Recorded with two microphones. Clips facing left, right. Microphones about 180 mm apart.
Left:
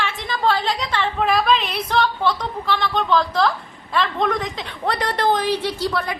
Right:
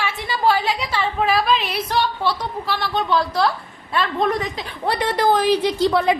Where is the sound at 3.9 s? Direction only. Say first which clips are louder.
Right 1 dB; 5° right (ahead or behind); by 6.1 s 20° right (ahead or behind).